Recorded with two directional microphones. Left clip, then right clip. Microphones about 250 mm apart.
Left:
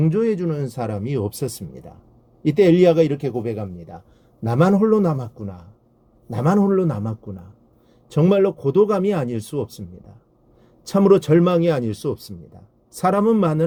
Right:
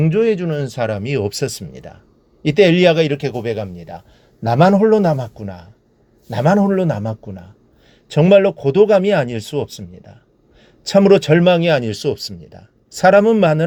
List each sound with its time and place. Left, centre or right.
0.3 s speech: centre